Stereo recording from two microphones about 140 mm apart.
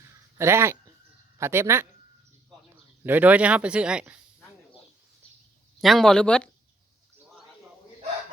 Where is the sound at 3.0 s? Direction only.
10° right (ahead or behind).